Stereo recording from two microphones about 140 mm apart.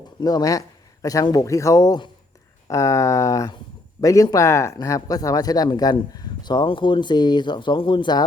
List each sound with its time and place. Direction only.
0.2 s speech: 30° left (ahead or behind)